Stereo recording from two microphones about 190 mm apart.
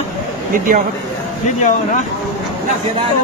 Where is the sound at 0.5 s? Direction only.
45° right (ahead or behind).